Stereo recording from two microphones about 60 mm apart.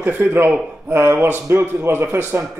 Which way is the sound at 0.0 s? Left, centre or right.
Right.